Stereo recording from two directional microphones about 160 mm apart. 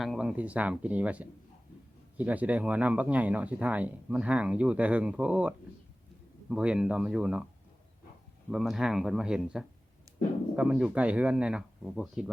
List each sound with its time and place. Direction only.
0.0 s speech: centre (ahead or behind)
8.4 s speech: centre (ahead or behind)
10.1 s a sound: 20° right (ahead or behind)
10.5 s speech: 5° right (ahead or behind)